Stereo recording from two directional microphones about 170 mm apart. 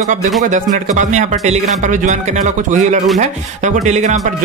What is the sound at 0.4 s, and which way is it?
Speech, 45° right (ahead or behind).